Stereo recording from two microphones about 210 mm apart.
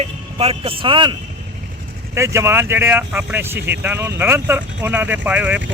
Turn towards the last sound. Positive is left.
turn(degrees=-10)  # may be behind; listen again after turning